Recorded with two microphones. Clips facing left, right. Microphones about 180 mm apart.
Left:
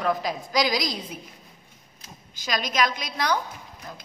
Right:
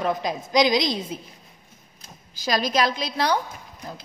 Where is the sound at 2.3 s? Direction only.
35° right (ahead or behind).